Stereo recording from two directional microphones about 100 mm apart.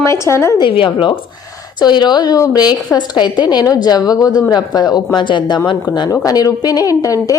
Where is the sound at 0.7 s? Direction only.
60° left (ahead or behind).